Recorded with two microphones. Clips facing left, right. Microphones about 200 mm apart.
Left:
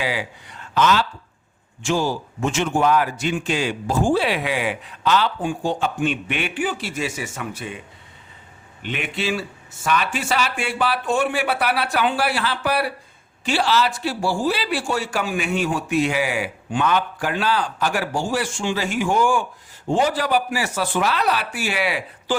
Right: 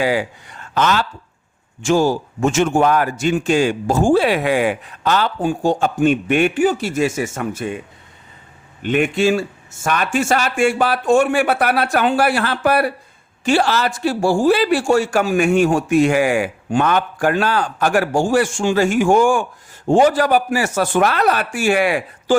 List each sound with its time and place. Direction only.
0.0 s a man's voice: 45° right (ahead or behind)
8.8 s a man's voice: 45° right (ahead or behind)